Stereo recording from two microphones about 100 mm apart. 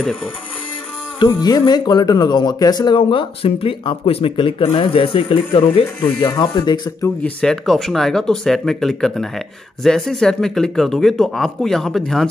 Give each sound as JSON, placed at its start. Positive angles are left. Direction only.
{"t": 1.2, "sound": "speech", "side_deg": 40}
{"t": 3.0, "sound": "speech", "side_deg": 65}
{"t": 6.0, "sound": "speech", "side_deg": 40}
{"t": 7.2, "sound": "a man's voice", "side_deg": 5}